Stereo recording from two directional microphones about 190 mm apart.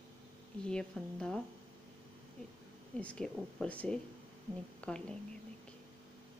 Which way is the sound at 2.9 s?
5° left (ahead or behind).